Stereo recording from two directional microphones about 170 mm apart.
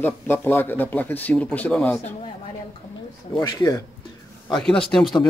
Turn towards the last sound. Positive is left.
turn(degrees=5)  # may be behind; listen again after turning